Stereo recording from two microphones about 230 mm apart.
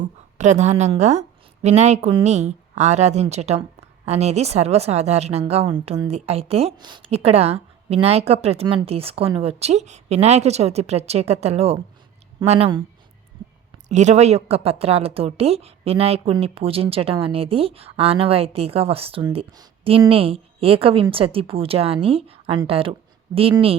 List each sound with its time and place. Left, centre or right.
0.3 s speech: right
13.8 s speech: right